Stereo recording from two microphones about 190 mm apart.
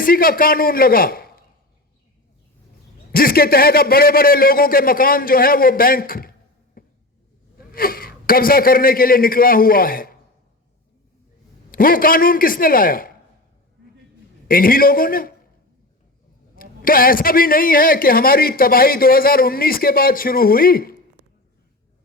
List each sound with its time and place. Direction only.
0.0 s a man's voice: 50° left (ahead or behind)
3.1 s a man's voice: 50° left (ahead or behind)
6.8 s a sound: 50° left (ahead or behind)
7.7 s a man's voice: 50° left (ahead or behind)
11.7 s a man's voice: 50° left (ahead or behind)
14.4 s a man's voice: 50° left (ahead or behind)
16.6 s a man's voice: 50° left (ahead or behind)